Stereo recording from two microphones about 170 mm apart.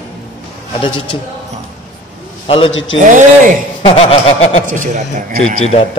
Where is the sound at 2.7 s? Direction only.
90° left.